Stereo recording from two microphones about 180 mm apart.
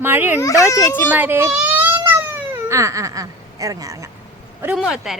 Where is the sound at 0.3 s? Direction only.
15° left (ahead or behind).